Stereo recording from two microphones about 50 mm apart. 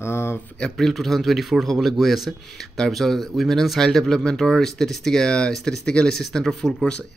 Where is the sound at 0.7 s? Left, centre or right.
Centre.